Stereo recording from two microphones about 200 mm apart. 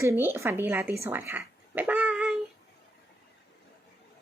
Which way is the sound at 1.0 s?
10° right (ahead or behind).